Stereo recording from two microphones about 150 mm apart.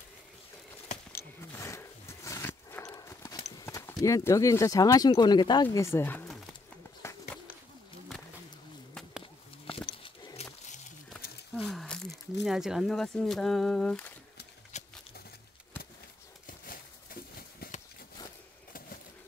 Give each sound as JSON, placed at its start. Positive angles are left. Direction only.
{"t": 1.5, "sound": "wild animals", "side_deg": 20}
{"t": 2.9, "sound": "horse", "side_deg": 20}
{"t": 3.6, "sound": "clip-clop", "side_deg": 15}
{"t": 4.0, "sound": "speech", "side_deg": 20}
{"t": 7.0, "sound": "bird", "side_deg": 15}
{"t": 9.7, "sound": "a sound", "side_deg": 35}
{"t": 10.0, "sound": "wild animals", "side_deg": 40}
{"t": 11.5, "sound": "speech", "side_deg": 5}
{"t": 14.7, "sound": "a sound", "side_deg": 50}
{"t": 16.4, "sound": "a sound", "side_deg": 70}